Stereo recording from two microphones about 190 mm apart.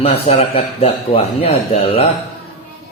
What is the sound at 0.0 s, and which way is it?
A man's voice, 30° left (ahead or behind).